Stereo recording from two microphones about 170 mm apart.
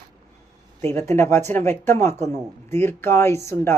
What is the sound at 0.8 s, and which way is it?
Speech, 15° left (ahead or behind).